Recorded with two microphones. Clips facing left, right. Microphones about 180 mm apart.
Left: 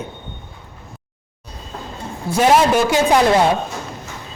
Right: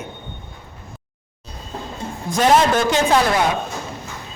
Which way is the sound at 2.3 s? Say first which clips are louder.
Left 2 dB; 10° left (ahead or behind).